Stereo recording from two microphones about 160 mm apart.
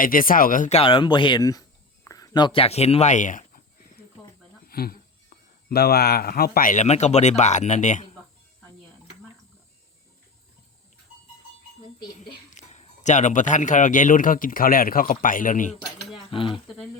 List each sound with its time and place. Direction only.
0.0 s speech: 60° left (ahead or behind)
0.8 s speech: 30° left (ahead or behind)
2.0 s a sound: 20° left (ahead or behind); by 4.0 s 55° left (ahead or behind)
4.6 s speech: 70° left (ahead or behind); by 8.1 s 50° left (ahead or behind)
12.1 s speech: 45° left (ahead or behind)
16.1 s cutlery: 30° left (ahead or behind)